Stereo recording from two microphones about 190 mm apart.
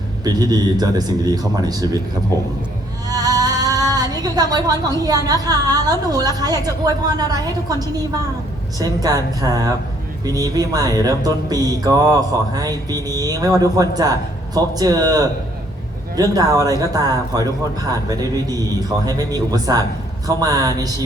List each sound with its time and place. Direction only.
0.3 s a woman's voice: 20° right (ahead or behind)
3.1 s a sound: 20° right (ahead or behind)
5.0 s a woman's voice: 20° right (ahead or behind)